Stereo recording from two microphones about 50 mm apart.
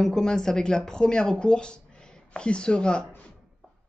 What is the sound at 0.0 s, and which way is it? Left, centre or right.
Speech, centre.